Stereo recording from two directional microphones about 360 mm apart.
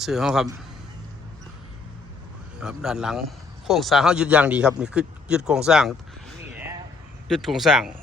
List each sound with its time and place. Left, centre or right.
0.0 s speech: centre
2.6 s speech: centre
7.3 s speech: centre